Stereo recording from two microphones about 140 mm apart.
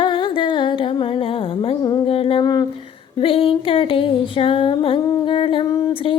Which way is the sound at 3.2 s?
40° left (ahead or behind).